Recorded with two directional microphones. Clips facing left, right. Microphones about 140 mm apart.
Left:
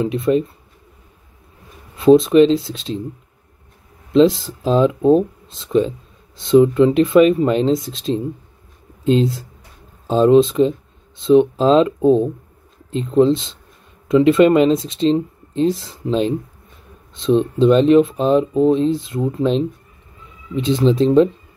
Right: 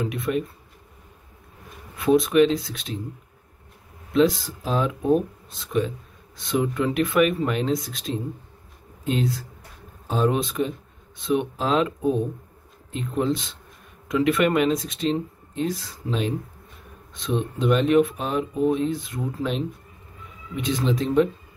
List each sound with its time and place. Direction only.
0.0 s speech: 25° left (ahead or behind)
2.0 s speech: 25° left (ahead or behind)
4.1 s speech: 25° left (ahead or behind)